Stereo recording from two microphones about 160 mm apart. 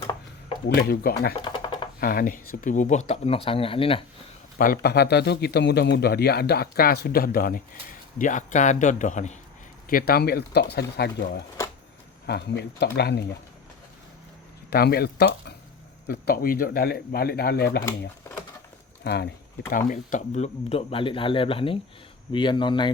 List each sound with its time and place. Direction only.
0.7 s speech: 70° left (ahead or behind)
1.4 s a sound: 30° left (ahead or behind)
2.0 s speech: 65° left (ahead or behind); by 4.0 s 35° left (ahead or behind)
4.5 s a man's voice: 65° left (ahead or behind)
8.2 s speech: 50° left (ahead or behind)
9.9 s speech: 75° left (ahead or behind); by 13.2 s 90° left
14.7 s speech: 75° left (ahead or behind)
16.0 s speech: 65° left (ahead or behind)
19.0 s speech: 90° left
19.9 s speech: 50° left (ahead or behind); by 22.9 s 30° left (ahead or behind)